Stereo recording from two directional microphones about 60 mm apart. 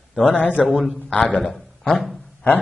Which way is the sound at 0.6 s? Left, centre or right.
Centre.